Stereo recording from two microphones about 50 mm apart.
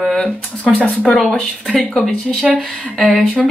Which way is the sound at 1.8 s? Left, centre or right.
Left.